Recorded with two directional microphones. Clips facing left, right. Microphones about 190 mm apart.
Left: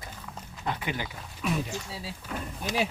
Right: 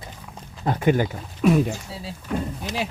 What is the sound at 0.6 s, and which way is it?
Speech, 45° right (ahead or behind).